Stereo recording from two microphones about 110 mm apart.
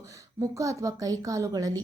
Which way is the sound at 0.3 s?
30° right (ahead or behind).